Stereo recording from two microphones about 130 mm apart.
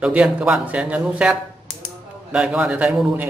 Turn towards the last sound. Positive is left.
turn(degrees=-10)  # may be behind; listen again after turning